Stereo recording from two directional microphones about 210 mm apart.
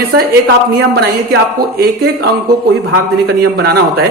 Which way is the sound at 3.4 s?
50° right (ahead or behind).